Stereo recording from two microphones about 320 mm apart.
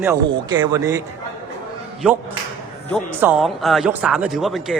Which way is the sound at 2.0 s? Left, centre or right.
Centre.